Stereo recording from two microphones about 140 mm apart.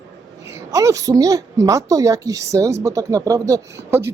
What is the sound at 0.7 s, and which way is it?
A woman's voice, 20° right (ahead or behind).